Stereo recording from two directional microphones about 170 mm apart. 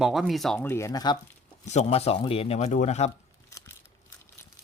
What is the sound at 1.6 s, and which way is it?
Speech, 40° left (ahead or behind).